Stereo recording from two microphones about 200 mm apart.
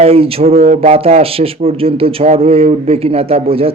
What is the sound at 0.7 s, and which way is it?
Speech, 45° right (ahead or behind).